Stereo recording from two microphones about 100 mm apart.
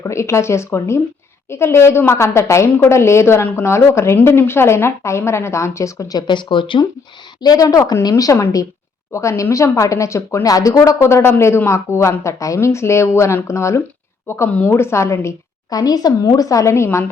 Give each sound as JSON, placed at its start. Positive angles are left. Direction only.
{"t": 0.0, "sound": "a woman's voice", "side_deg": 30}
{"t": 7.4, "sound": "a woman's voice", "side_deg": 40}